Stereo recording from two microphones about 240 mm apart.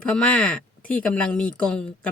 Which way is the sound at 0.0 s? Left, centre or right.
Centre.